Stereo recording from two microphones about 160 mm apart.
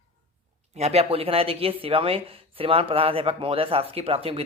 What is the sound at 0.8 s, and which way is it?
A woman's voice, 40° right (ahead or behind).